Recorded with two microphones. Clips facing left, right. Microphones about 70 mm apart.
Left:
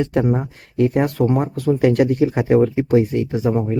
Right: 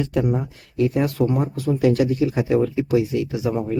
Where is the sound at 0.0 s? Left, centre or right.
Left.